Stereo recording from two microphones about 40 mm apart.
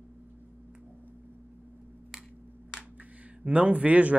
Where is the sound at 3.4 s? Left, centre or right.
Right.